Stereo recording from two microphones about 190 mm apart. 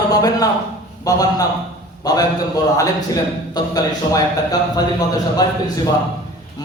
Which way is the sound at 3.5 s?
20° left (ahead or behind).